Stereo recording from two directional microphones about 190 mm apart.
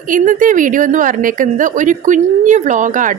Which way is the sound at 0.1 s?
45° right (ahead or behind).